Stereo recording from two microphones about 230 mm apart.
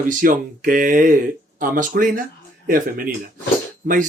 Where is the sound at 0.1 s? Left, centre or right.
Right.